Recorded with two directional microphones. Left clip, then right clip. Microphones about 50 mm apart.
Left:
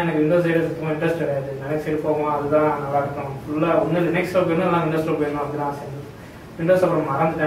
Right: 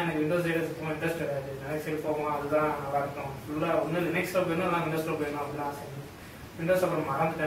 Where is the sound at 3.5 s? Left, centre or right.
Right.